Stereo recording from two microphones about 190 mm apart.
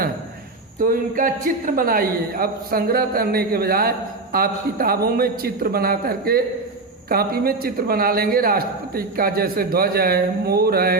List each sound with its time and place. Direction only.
0.8 s a man's voice: 45° right (ahead or behind)